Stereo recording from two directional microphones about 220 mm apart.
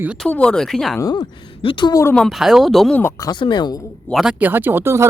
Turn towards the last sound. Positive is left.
turn(degrees=-10)  # may be behind; listen again after turning